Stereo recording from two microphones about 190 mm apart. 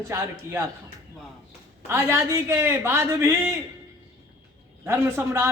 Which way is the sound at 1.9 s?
15° right (ahead or behind).